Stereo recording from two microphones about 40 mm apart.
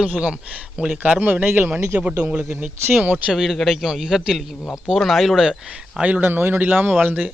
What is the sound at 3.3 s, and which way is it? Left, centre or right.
A man's voice, centre.